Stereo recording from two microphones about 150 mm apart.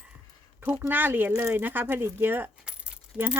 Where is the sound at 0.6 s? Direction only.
15° right (ahead or behind).